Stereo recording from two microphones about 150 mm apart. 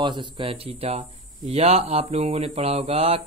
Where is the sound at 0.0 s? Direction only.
30° right (ahead or behind).